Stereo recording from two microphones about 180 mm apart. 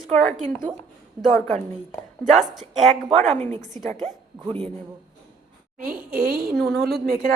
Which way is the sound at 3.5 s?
40° right (ahead or behind).